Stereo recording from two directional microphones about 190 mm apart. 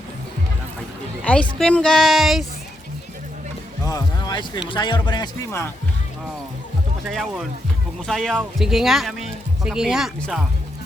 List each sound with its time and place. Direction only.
1.2 s a woman's voice: 5° left (ahead or behind)
3.8 s a sound: 20° left (ahead or behind)
4.7 s speech: 25° left (ahead or behind)
7.0 s a woman's voice: centre (ahead or behind)